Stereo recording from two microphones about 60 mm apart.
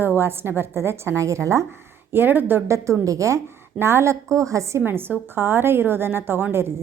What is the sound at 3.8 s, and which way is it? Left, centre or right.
A woman's voice, right.